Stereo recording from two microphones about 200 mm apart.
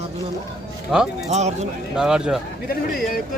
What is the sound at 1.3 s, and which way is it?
Speech, 35° right (ahead or behind).